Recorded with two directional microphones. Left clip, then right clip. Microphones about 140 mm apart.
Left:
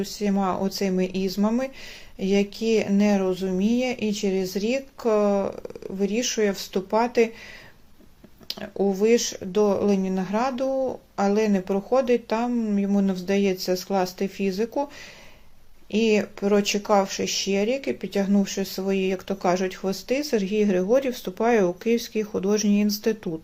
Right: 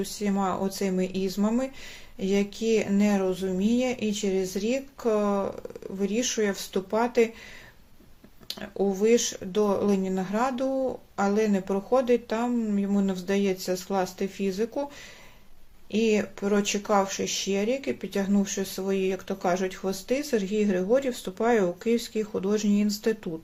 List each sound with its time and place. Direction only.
0.0 s speech: 15° left (ahead or behind)
8.4 s speech: 20° left (ahead or behind)
15.9 s speech: 20° left (ahead or behind)